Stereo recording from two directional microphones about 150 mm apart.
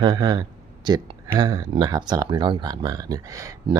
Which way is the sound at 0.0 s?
30° right (ahead or behind).